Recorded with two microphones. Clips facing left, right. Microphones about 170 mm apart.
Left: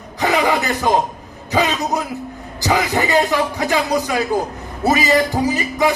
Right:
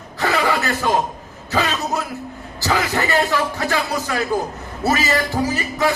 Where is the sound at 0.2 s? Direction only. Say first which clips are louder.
Left 3 dB; 15° left (ahead or behind).